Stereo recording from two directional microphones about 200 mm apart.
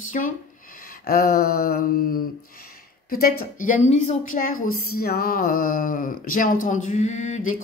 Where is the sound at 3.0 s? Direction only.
50° left (ahead or behind).